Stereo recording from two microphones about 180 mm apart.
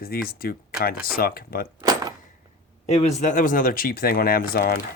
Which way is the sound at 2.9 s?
35° left (ahead or behind).